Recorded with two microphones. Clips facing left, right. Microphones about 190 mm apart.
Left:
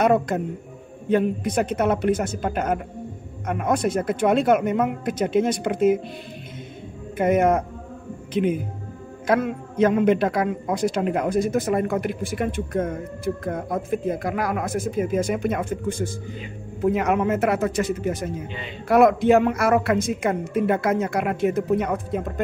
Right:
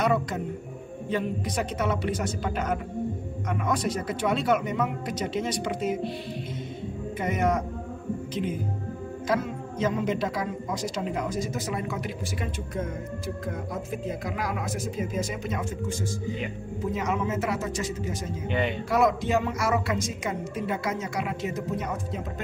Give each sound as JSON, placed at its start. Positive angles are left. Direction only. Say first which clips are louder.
{"t": 0.0, "sound": "a man's voice", "louder": "left 6 dB", "side_deg": 55}
{"t": 7.2, "sound": "a man's voice", "louder": "left 8 dB", "side_deg": 55}
{"t": 9.3, "sound": "a man's voice", "louder": "left 7 dB", "side_deg": 60}